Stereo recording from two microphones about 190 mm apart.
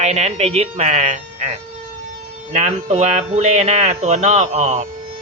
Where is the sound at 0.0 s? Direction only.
35° right (ahead or behind).